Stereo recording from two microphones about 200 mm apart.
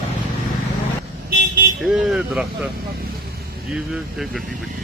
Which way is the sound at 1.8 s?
Centre (ahead or behind).